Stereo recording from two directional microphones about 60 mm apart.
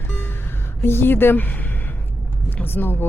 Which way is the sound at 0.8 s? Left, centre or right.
Left.